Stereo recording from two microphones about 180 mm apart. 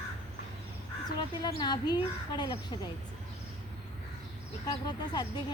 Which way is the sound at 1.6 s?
25° left (ahead or behind).